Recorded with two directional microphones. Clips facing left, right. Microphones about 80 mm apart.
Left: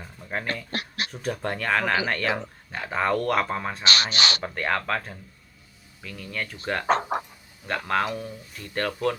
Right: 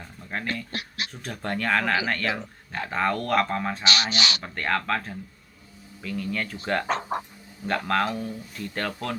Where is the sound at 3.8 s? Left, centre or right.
Left.